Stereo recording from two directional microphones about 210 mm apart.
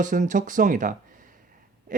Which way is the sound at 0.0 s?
40° right (ahead or behind).